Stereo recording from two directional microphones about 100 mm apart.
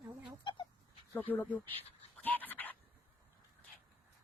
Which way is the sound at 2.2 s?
15° left (ahead or behind).